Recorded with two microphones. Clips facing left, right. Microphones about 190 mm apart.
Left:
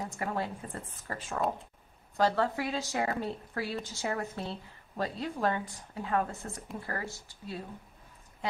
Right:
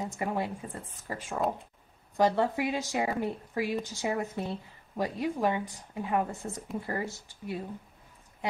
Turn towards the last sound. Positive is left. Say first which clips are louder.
# right 4 dB
turn(degrees=-15)  # may be behind; listen again after turning